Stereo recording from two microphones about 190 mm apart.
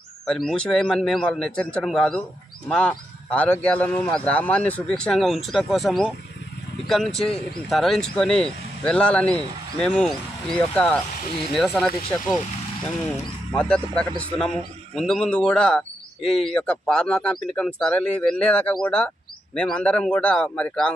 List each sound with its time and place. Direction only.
0.3 s speech: centre (ahead or behind)
13.6 s a man's voice: 5° left (ahead or behind)
16.2 s speech: 30° left (ahead or behind)
16.4 s speech: 5° left (ahead or behind)